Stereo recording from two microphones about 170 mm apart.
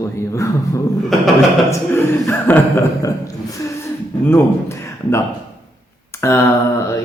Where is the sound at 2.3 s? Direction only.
15° left (ahead or behind).